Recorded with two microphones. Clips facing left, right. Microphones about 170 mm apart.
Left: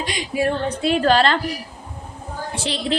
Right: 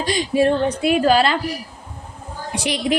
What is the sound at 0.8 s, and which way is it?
Speech, 10° right (ahead or behind).